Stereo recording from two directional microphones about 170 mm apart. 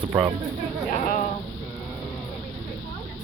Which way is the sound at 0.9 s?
50° left (ahead or behind).